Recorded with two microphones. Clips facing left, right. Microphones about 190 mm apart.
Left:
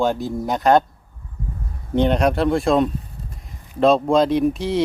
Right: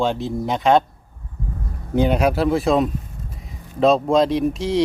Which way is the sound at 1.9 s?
5° right (ahead or behind).